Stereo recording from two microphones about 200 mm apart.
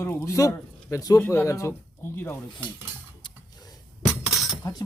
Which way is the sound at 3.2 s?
20° left (ahead or behind).